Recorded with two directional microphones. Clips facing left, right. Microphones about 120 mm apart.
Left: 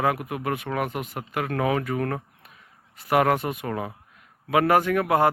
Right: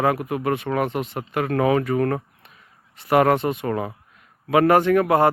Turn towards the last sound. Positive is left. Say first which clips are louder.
# right 4 dB
turn(degrees=5)  # may be behind; listen again after turning